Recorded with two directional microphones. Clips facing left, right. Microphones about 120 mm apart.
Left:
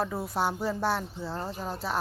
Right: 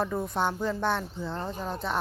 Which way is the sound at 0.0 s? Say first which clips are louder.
Right 1 dB; 5° left (ahead or behind).